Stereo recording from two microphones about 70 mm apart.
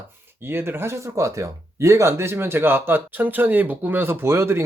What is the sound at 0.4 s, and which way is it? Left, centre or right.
Speech, right.